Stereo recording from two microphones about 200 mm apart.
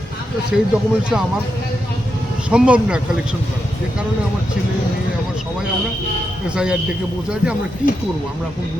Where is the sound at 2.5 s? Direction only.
5° right (ahead or behind).